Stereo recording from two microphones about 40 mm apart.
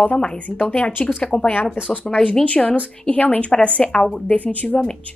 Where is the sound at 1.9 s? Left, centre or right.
Left.